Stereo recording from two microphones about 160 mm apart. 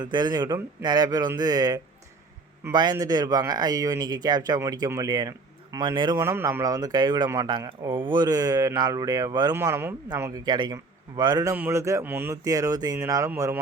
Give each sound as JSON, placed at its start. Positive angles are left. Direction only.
{"t": 0.0, "sound": "speech", "side_deg": -30}
{"t": 6.1, "sound": "speech", "side_deg": -15}
{"t": 11.5, "sound": "speech", "side_deg": -15}